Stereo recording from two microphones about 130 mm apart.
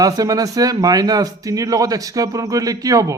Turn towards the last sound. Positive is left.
turn(degrees=-25)  # may be behind; listen again after turning